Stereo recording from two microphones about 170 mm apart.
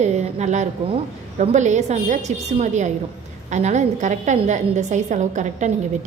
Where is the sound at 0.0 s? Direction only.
40° right (ahead or behind).